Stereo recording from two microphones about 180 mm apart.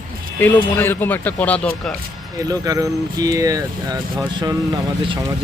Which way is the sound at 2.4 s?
20° right (ahead or behind).